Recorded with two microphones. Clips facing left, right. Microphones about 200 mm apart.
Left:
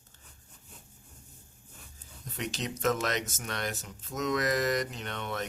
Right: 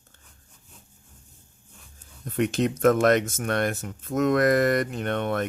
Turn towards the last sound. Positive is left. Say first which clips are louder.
# right 10 dB
turn(degrees=-55)  # may be behind; listen again after turning